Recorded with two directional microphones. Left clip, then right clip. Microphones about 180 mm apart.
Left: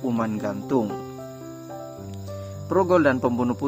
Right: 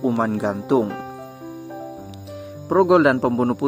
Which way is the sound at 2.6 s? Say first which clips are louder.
Right 4 dB; 15° right (ahead or behind).